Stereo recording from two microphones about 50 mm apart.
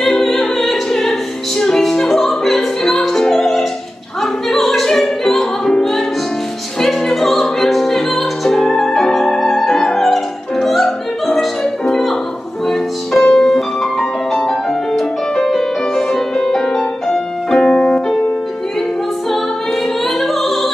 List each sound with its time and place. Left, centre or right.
0.2 s music: centre
1.6 s opera: centre
4.2 s music: centre
17.7 s piano: left
19.3 s music: centre